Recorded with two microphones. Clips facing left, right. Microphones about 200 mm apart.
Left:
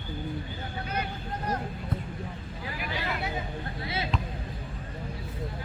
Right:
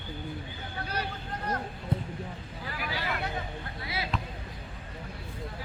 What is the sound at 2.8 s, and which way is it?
Hubbub, centre (ahead or behind).